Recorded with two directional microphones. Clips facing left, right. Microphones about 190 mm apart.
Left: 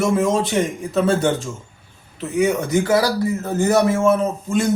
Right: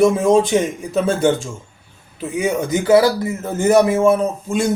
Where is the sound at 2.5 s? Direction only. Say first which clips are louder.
Right 4 dB; 20° right (ahead or behind).